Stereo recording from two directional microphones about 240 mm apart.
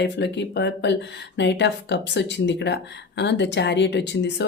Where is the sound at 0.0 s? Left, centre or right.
Left.